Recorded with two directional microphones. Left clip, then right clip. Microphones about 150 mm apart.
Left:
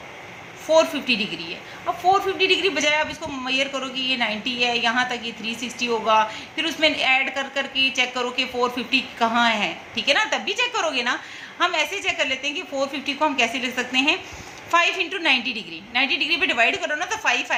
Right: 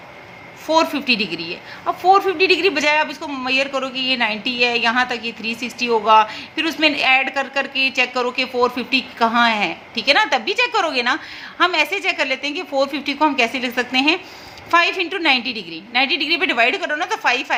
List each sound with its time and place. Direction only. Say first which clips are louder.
0.7 s a woman's voice: right 2 dB; 50° right (ahead or behind)